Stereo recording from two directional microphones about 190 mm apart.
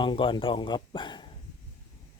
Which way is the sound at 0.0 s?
25° left (ahead or behind).